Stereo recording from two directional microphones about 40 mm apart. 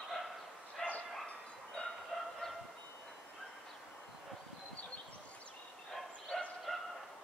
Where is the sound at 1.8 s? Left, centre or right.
Centre.